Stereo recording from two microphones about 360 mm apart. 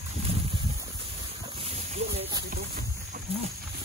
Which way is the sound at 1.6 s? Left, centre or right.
Centre.